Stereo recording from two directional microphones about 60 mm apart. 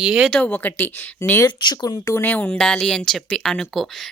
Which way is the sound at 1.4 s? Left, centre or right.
Left.